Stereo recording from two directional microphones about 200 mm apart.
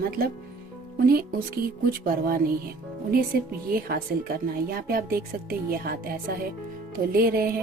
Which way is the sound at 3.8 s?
50° right (ahead or behind).